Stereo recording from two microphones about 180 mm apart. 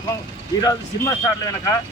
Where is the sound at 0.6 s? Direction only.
20° left (ahead or behind).